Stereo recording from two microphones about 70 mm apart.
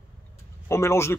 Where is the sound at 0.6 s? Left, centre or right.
Left.